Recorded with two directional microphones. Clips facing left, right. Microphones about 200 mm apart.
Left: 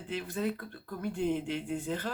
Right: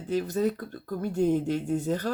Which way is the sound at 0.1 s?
40° right (ahead or behind).